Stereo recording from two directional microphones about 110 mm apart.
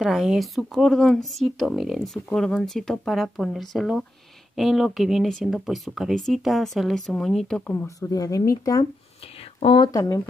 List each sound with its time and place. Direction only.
0.0 s speech: centre (ahead or behind)
7.7 s speech: 25° left (ahead or behind)
9.2 s a sound: 60° left (ahead or behind)
9.8 s speech: 35° left (ahead or behind)